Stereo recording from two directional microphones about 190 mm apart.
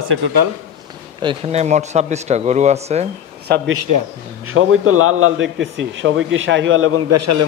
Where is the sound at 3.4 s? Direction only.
60° right (ahead or behind).